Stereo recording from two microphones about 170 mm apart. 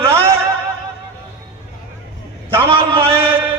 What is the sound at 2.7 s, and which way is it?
Speech, 30° right (ahead or behind).